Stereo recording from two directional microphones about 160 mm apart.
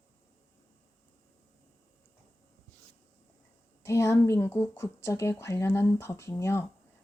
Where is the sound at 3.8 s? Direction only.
20° left (ahead or behind).